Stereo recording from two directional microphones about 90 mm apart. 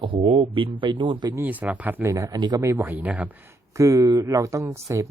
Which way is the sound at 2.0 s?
35° right (ahead or behind).